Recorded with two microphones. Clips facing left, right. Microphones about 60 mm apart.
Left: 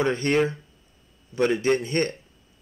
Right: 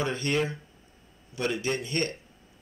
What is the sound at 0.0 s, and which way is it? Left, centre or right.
Speech, left.